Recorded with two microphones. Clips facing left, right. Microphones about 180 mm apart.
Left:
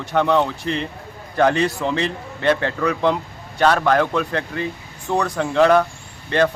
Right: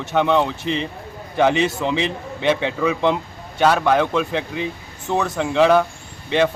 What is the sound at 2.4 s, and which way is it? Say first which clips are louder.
Speech: even; centre (ahead or behind).